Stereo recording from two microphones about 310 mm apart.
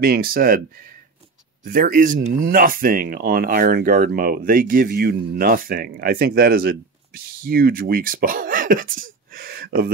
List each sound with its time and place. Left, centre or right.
0.0 s speech: right
1.6 s speech: right